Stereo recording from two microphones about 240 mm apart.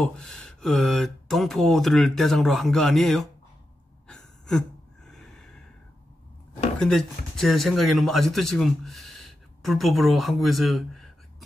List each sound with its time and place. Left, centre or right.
0.0 s speech: centre
4.1 s gasp: centre
6.8 s speech: centre